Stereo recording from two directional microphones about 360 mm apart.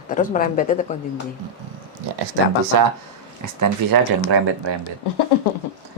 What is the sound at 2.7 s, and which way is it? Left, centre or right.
Speech, right.